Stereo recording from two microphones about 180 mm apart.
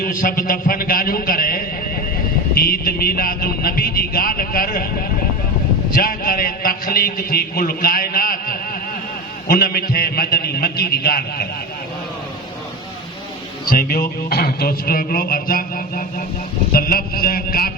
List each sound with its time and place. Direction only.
0.0 s a man's voice: 50° left (ahead or behind)
5.9 s a man's voice: 55° left (ahead or behind)
13.7 s speech: 55° left (ahead or behind)